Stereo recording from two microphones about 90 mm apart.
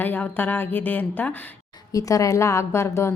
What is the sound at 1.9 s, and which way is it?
A woman's voice, 40° left (ahead or behind).